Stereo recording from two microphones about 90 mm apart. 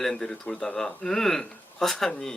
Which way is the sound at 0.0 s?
5° left (ahead or behind).